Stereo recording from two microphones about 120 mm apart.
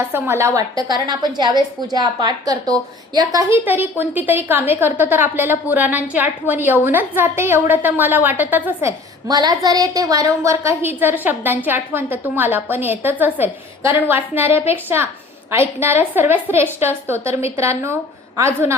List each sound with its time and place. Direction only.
0.1 s a woman's voice: 20° right (ahead or behind)
3.5 s a woman's voice: 15° right (ahead or behind)